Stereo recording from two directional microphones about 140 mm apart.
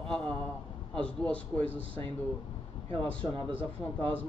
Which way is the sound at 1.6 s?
40° right (ahead or behind).